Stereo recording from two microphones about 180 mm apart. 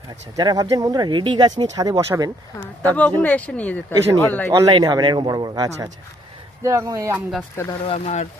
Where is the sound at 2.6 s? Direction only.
10° left (ahead or behind).